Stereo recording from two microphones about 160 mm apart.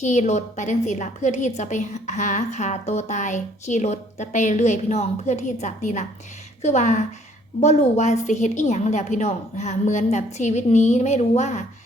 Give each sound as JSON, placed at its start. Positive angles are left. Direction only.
{"t": 0.0, "sound": "a woman's voice", "side_deg": 45}